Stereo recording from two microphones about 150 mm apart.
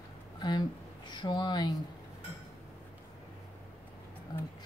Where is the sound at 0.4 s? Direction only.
30° left (ahead or behind).